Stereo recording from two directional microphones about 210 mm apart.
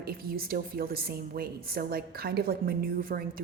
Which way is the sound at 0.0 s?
45° right (ahead or behind).